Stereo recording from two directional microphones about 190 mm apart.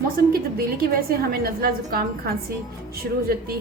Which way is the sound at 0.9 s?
50° right (ahead or behind).